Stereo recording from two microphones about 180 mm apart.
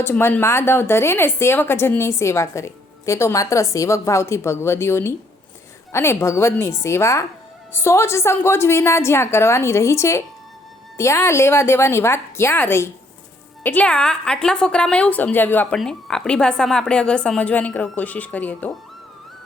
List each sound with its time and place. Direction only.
0.0 s a woman's voice: 10° left (ahead or behind)